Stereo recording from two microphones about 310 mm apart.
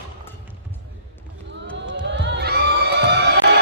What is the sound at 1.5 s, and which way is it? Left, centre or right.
Crowd, right.